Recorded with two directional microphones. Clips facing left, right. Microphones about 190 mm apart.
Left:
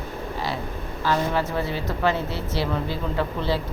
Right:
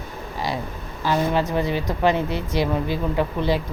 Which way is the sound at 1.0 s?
15° right (ahead or behind).